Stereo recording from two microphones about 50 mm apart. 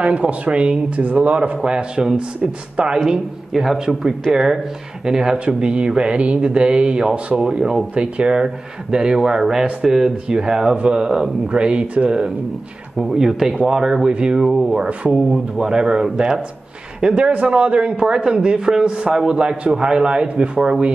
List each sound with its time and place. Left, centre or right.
0.0 s a man's voice: right
3.1 s a man's voice: centre; by 12.3 s right
13.0 s speech: centre
14.5 s a man's voice: centre